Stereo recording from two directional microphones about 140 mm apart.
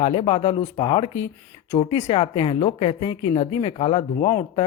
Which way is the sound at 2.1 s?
40° left (ahead or behind).